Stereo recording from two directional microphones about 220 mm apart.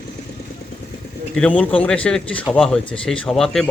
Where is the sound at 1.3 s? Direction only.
5° left (ahead or behind).